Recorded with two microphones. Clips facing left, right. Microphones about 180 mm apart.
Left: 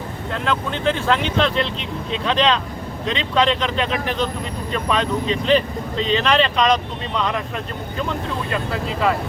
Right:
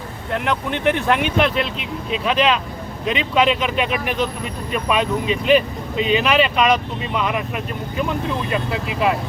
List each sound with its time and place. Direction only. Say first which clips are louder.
0.3 s speech: right 2 dB; 20° right (ahead or behind)